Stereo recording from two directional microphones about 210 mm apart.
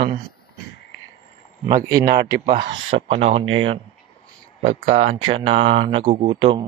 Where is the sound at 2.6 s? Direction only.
30° right (ahead or behind).